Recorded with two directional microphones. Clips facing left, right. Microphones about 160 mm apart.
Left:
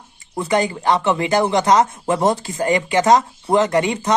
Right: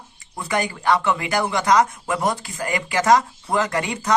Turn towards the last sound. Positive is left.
turn(degrees=20)  # may be behind; listen again after turning